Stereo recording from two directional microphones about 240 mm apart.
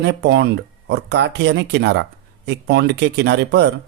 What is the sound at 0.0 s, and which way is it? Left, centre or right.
Speech, right.